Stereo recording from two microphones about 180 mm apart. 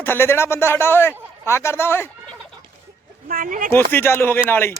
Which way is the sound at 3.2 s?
50° right (ahead or behind).